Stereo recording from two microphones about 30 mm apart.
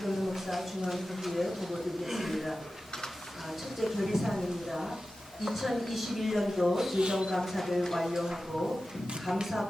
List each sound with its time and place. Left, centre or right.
0.0 s a sound: centre
3.8 s speech: centre
7.0 s speech: right
7.3 s speech: centre
8.1 s speech: centre